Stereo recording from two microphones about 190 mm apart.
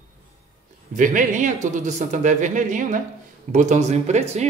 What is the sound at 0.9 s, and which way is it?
A man's voice, 45° right (ahead or behind).